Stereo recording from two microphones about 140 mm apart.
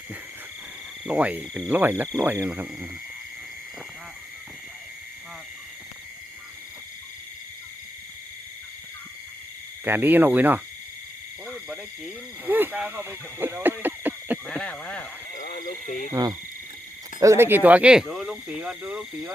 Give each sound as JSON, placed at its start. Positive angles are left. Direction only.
{"t": 1.0, "sound": "speech", "side_deg": -10}
{"t": 9.8, "sound": "speech", "side_deg": -15}
{"t": 11.4, "sound": "frog", "side_deg": 5}
{"t": 12.5, "sound": "speech", "side_deg": -15}
{"t": 14.4, "sound": "speech", "side_deg": 10}
{"t": 15.4, "sound": "speech", "side_deg": 85}
{"t": 17.2, "sound": "speech", "side_deg": -20}